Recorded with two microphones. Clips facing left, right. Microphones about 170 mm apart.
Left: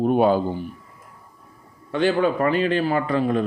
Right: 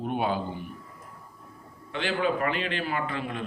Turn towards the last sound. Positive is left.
turn(degrees=40)  # may be behind; listen again after turning